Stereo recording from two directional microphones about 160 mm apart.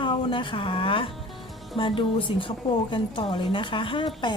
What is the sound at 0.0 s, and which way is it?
A woman's voice, 30° left (ahead or behind).